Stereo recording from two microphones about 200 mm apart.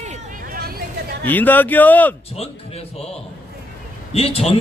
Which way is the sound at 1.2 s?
10° left (ahead or behind).